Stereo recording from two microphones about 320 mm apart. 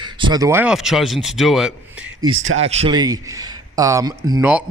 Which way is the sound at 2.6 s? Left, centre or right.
Centre.